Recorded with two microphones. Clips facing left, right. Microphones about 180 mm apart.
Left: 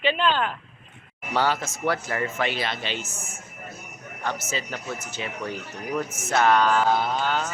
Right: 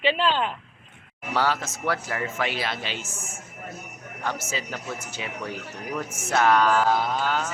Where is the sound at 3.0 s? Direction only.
25° right (ahead or behind).